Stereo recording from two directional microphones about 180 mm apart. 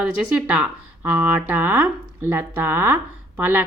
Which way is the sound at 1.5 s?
10° right (ahead or behind).